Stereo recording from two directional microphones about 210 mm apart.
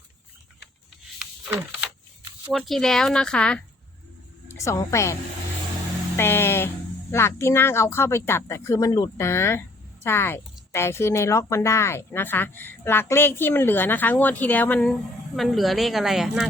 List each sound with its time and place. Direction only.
2.5 s a woman's voice: centre (ahead or behind)
6.1 s speech: 10° left (ahead or behind)